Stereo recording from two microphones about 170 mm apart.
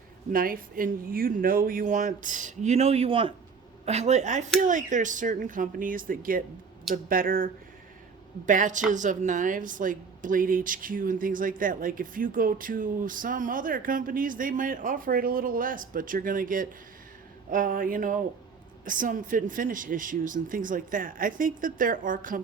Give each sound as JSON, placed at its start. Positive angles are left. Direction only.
{"t": 0.3, "sound": "a woman's voice", "side_deg": -55}